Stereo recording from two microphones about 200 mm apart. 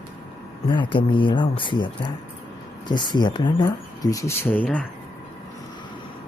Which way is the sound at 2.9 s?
20° left (ahead or behind).